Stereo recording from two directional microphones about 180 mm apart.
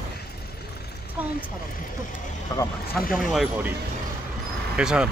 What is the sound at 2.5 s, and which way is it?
Speech, 20° left (ahead or behind).